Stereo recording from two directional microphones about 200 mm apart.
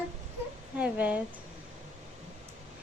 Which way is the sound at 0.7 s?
5° right (ahead or behind).